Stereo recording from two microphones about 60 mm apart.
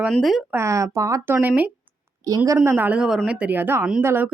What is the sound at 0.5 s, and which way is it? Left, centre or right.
Speech, right.